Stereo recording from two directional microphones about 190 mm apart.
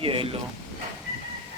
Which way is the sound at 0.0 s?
30° right (ahead or behind).